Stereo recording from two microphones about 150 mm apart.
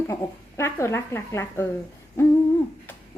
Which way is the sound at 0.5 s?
15° left (ahead or behind).